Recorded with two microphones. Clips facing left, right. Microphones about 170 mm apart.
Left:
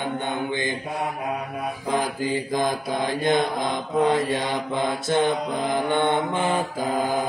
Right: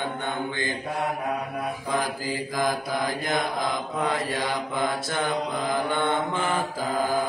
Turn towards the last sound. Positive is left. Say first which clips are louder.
# left 3 dB
turn(degrees=20)  # may be behind; listen again after turning